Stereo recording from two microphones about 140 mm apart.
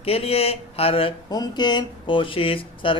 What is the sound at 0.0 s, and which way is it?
Speech, 45° left (ahead or behind).